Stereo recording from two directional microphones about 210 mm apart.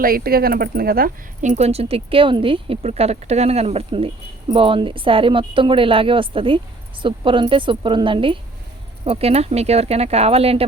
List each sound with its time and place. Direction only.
0.0 s speech: 45° right (ahead or behind); by 10.7 s 30° right (ahead or behind)